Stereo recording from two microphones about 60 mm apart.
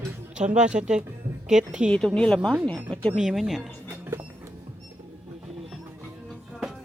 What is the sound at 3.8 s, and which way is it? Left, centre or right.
Music, right.